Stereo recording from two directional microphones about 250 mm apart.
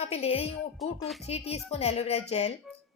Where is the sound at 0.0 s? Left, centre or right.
Left.